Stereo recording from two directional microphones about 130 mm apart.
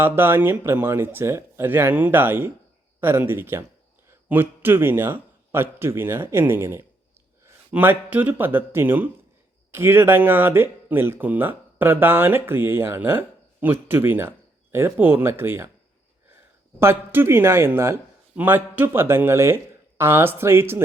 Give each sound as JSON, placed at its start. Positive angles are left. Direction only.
{"t": 0.0, "sound": "speech", "side_deg": -15}
{"t": 16.8, "sound": "speech", "side_deg": -15}